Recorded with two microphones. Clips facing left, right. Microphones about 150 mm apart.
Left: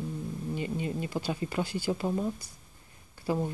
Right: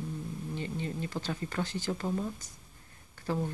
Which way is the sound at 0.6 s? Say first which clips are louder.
Left 3 dB; 15° left (ahead or behind).